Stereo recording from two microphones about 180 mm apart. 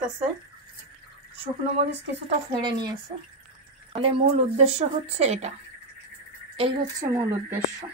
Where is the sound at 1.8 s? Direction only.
30° right (ahead or behind).